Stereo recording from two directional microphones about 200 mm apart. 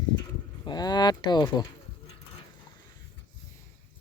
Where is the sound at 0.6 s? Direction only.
20° left (ahead or behind).